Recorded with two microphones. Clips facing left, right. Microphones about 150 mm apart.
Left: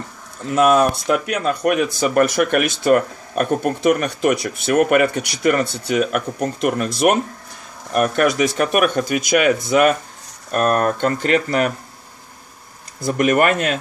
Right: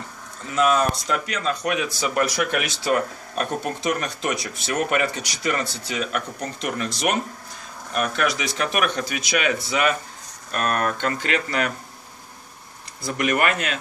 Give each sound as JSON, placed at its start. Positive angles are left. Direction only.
{"t": 0.5, "sound": "speech", "side_deg": 55}
{"t": 7.9, "sound": "speech", "side_deg": 50}
{"t": 13.0, "sound": "speech", "side_deg": 45}